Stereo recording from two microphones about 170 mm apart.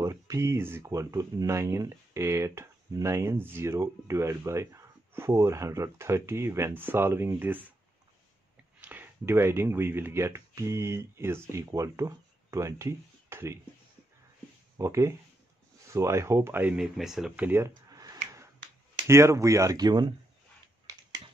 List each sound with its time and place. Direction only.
0.0 s speech: 20° right (ahead or behind)
8.8 s speech: 10° right (ahead or behind)
14.8 s speech: 15° right (ahead or behind)